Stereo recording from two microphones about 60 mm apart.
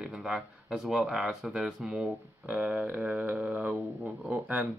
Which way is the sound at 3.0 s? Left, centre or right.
Right.